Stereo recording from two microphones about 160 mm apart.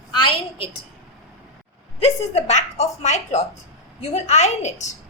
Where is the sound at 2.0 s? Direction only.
40° left (ahead or behind).